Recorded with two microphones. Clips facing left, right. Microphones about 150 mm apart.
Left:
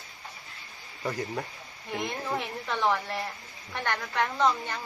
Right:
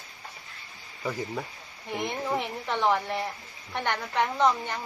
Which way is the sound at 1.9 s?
15° right (ahead or behind).